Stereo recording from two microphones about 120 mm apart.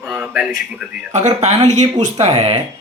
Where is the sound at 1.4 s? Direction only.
70° right (ahead or behind).